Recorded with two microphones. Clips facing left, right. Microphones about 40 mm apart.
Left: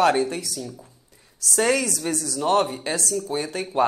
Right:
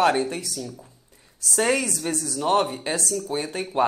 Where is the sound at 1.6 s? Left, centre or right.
Right.